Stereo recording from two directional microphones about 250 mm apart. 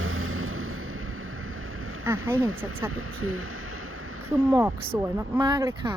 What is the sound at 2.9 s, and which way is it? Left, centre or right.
Speech, right.